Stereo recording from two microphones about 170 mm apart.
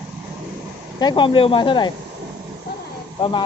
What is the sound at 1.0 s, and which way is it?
Speech, 30° left (ahead or behind).